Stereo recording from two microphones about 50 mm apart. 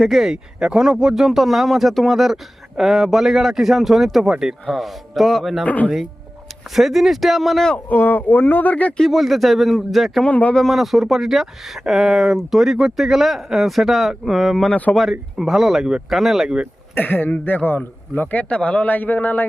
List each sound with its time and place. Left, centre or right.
0.1 s speech: centre
5.6 s speech: left
6.7 s speech: centre
7.9 s speech: left
9.0 s speech: centre
10.2 s a man's voice: left
10.7 s speech: centre
16.9 s speech: left
18.4 s a man's voice: left
18.9 s speech: left